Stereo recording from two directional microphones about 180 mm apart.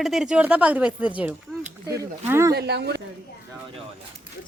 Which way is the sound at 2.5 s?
65° right (ahead or behind).